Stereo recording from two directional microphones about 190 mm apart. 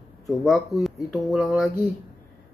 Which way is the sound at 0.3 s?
Centre (ahead or behind).